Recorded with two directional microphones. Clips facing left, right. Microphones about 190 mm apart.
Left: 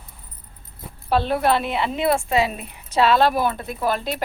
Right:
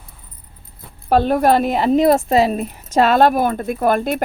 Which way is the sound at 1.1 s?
45° right (ahead or behind).